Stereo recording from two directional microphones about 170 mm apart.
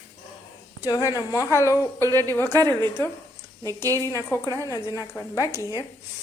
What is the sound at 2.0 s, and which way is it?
Speech, 20° right (ahead or behind).